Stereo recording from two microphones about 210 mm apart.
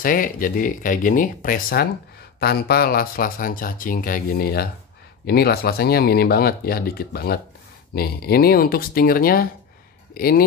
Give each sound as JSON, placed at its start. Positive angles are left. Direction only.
{"t": 0.0, "sound": "speech", "side_deg": 40}